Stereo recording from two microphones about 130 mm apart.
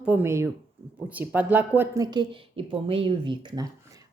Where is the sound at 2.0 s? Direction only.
35° right (ahead or behind).